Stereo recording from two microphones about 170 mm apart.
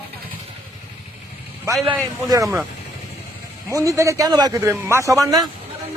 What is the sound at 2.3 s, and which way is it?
Speech, 20° right (ahead or behind).